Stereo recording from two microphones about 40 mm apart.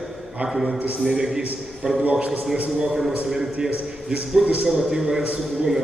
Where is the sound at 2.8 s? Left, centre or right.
Centre.